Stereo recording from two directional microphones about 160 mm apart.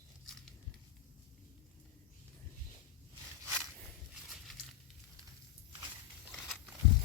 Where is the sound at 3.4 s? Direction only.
20° right (ahead or behind).